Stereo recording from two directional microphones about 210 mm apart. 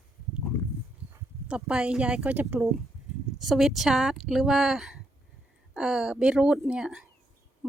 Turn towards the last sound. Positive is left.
turn(degrees=-5)  # may be behind; listen again after turning